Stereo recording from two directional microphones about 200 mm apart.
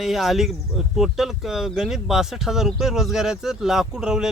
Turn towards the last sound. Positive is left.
turn(degrees=-5)  # may be behind; listen again after turning